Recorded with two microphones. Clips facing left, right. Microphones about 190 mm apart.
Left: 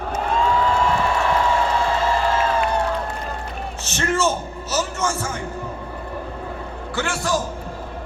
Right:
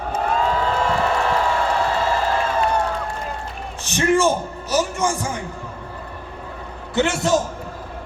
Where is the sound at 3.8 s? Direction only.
15° right (ahead or behind).